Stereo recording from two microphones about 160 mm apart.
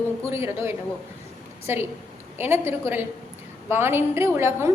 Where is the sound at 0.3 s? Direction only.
15° right (ahead or behind).